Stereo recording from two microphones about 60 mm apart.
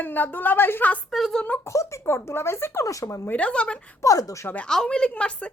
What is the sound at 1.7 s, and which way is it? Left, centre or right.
Speech, left.